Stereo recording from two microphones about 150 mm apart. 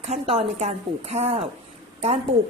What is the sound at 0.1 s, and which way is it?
Speech, 45° right (ahead or behind).